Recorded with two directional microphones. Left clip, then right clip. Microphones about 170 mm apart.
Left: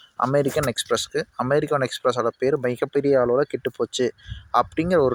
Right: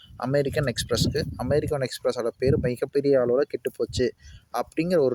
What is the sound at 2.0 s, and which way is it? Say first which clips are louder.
Speech: left 1 dB; 5° right (ahead or behind).